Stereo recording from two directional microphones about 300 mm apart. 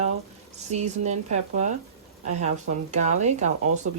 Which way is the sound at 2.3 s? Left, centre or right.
Right.